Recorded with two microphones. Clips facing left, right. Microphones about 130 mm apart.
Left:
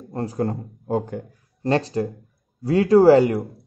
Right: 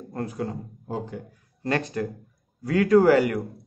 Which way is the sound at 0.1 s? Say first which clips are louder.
Left 4 dB; 30° left (ahead or behind).